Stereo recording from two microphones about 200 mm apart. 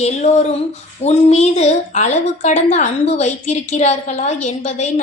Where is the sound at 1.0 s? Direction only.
35° left (ahead or behind).